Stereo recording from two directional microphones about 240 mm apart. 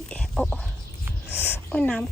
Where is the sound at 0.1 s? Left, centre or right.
Centre.